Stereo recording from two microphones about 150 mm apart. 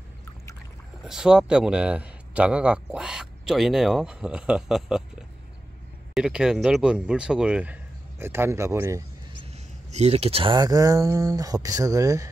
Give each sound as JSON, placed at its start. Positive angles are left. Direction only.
{"t": 1.0, "sound": "speech", "side_deg": -5}
{"t": 6.1, "sound": "speech", "side_deg": -5}
{"t": 9.5, "sound": "speech", "side_deg": -45}